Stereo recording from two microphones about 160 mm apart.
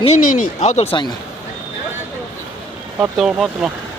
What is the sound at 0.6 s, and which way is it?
Speech, 40° left (ahead or behind).